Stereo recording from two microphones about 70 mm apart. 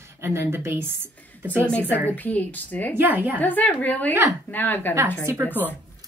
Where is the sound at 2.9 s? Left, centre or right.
Right.